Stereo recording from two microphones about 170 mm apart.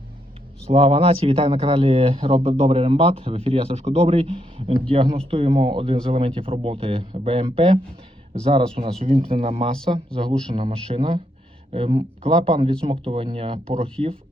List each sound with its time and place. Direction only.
0.7 s speech: 35° right (ahead or behind)